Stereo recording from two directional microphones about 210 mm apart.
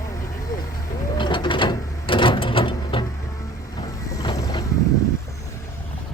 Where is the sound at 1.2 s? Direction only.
20° left (ahead or behind).